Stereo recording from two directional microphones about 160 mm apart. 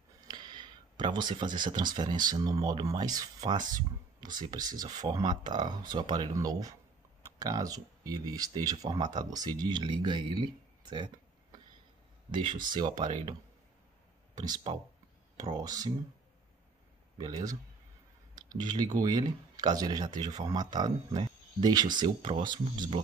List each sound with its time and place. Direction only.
0.3 s a sound: 25° right (ahead or behind)
1.7 s speech: 25° right (ahead or behind)
12.3 s speech: 30° right (ahead or behind)
17.2 s speech: 25° right (ahead or behind)